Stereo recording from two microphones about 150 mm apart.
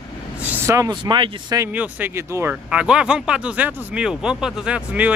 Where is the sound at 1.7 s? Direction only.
10° right (ahead or behind).